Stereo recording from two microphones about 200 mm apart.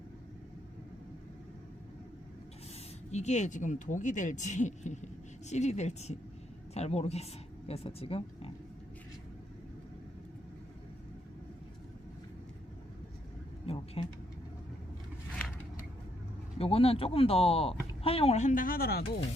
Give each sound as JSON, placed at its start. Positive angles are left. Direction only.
{"t": 3.1, "sound": "speech", "side_deg": 35}
{"t": 13.7, "sound": "vehicle", "side_deg": 30}
{"t": 16.6, "sound": "speech", "side_deg": 30}